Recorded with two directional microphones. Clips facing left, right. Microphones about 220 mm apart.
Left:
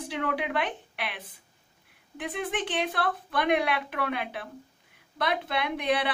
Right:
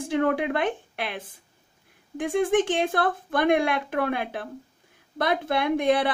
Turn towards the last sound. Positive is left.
turn(degrees=-45)  # may be behind; listen again after turning